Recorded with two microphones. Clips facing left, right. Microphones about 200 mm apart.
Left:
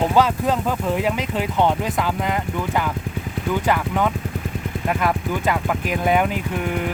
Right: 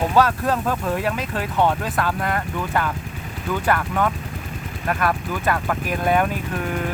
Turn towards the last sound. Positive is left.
turn(degrees=15)  # may be behind; listen again after turning